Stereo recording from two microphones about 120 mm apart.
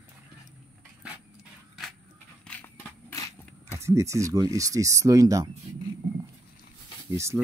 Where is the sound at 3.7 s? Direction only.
25° right (ahead or behind).